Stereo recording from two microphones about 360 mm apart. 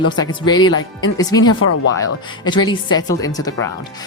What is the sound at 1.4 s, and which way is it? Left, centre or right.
Speech, left.